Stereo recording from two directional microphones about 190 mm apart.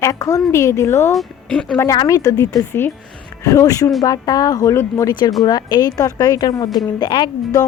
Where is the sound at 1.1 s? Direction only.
5° left (ahead or behind).